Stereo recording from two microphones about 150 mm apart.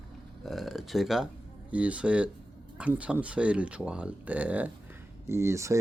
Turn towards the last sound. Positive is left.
turn(degrees=-20)  # may be behind; listen again after turning